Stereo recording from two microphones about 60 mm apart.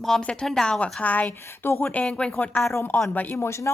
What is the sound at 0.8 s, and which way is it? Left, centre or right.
A woman's voice, left.